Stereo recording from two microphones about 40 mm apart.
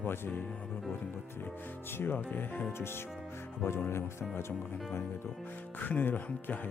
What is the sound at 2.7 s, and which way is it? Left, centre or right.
Speech, left.